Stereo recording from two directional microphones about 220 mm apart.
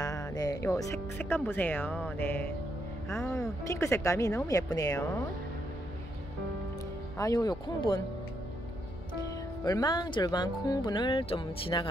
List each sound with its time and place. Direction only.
0.0 s speech: 15° left (ahead or behind)
7.2 s speech: 15° left (ahead or behind)
9.7 s speech: 20° left (ahead or behind)